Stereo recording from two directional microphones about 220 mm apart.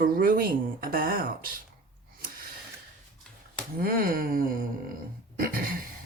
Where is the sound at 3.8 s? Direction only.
40° right (ahead or behind).